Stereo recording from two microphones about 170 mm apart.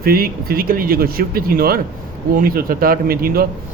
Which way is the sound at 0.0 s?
60° right (ahead or behind).